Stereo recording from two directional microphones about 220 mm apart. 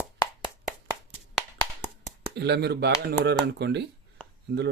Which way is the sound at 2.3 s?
50° right (ahead or behind).